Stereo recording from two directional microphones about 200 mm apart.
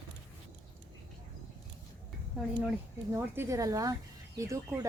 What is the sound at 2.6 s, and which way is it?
Speech, 10° right (ahead or behind).